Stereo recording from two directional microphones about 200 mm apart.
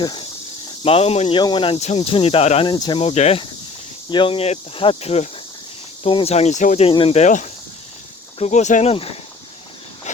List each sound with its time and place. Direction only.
0.0 s speech: 20° left (ahead or behind)